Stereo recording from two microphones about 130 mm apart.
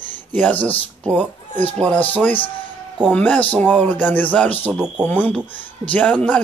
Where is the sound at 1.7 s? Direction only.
10° left (ahead or behind).